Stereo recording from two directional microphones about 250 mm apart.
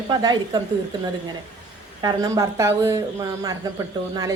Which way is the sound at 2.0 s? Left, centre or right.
Centre.